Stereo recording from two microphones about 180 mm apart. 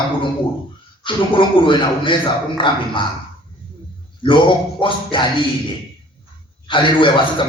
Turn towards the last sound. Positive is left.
turn(degrees=25)  # may be behind; listen again after turning